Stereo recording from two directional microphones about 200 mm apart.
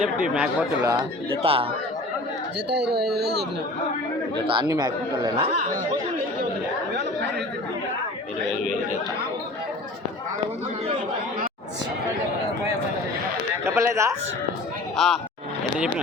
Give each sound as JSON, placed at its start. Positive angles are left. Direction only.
{"t": 0.0, "sound": "speech", "side_deg": -5}
{"t": 1.4, "sound": "speech", "side_deg": -30}
{"t": 4.4, "sound": "speech", "side_deg": -25}
{"t": 13.7, "sound": "speech", "side_deg": -15}
{"t": 14.9, "sound": "speech", "side_deg": 0}